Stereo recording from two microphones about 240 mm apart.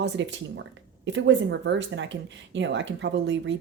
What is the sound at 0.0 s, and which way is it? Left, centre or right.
Speech, right.